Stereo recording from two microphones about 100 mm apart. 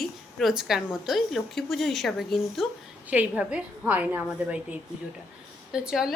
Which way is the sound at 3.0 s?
10° right (ahead or behind).